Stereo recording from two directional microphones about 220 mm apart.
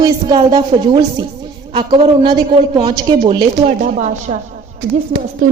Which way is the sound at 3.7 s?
35° right (ahead or behind).